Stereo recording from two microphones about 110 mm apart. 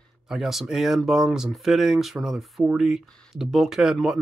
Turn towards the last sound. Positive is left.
turn(degrees=-5)  # may be behind; listen again after turning